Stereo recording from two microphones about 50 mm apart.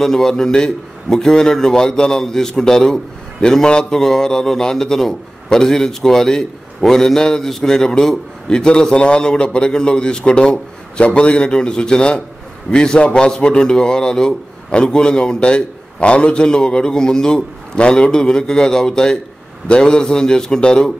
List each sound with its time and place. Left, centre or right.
0.0 s a man's voice: centre